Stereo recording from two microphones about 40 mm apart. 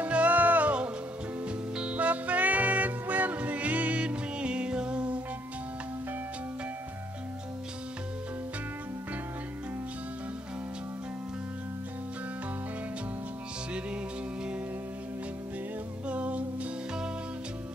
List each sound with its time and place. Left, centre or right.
0.0 s music: right
1.8 s music: right
16.1 s music: right